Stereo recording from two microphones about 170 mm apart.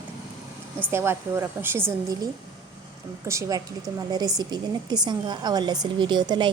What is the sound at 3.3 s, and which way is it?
A woman's voice, 20° right (ahead or behind).